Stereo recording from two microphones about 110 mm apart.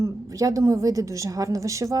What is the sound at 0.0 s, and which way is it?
A woman's voice, 30° right (ahead or behind).